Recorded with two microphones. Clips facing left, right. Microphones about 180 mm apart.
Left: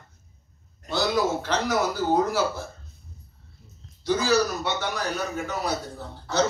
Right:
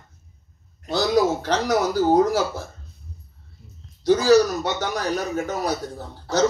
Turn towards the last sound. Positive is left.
turn(degrees=-40)  # may be behind; listen again after turning